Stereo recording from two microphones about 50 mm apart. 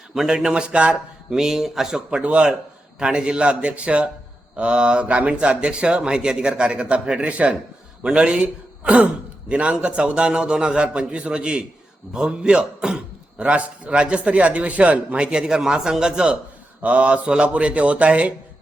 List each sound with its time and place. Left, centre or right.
0.3 s a man's voice: centre
0.9 s speech: centre
2.0 s a man's voice: right